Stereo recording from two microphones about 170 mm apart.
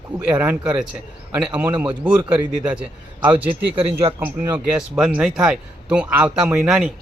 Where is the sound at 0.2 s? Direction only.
10° right (ahead or behind).